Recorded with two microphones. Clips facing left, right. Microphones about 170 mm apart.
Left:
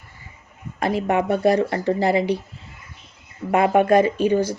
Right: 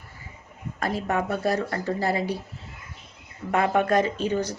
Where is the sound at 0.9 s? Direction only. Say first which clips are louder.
Left 6 dB; 15° left (ahead or behind).